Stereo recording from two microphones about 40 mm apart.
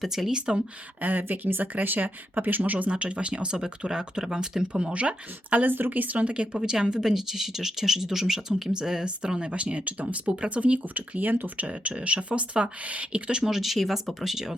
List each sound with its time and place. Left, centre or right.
0.0 s speech: centre
0.3 s speech: right
1.0 s speech: right
2.9 s speech: right
4.9 s speech: right
5.7 s speech: right
6.5 s speech: centre
7.0 s speech: centre; by 10.8 s right
10.9 s speech: right
11.6 s speech: right
13.4 s speech: centre